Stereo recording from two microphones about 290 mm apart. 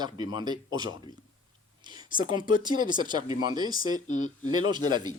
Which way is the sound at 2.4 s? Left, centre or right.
Centre.